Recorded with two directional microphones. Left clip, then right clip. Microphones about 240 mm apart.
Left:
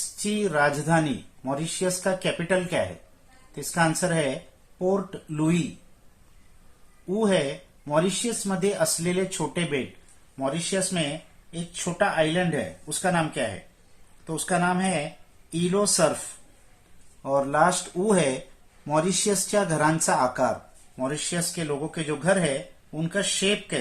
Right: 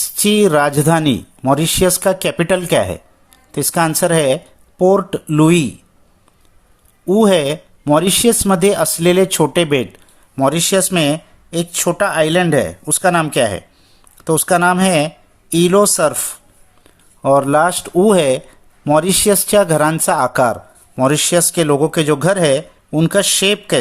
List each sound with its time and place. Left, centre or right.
0.3 s speech: right
7.1 s speech: right
17.2 s speech: right